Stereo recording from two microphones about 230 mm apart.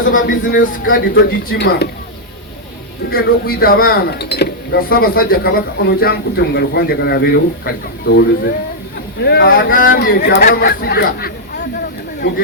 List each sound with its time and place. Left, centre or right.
0.0 s speech: left
3.1 s speech: left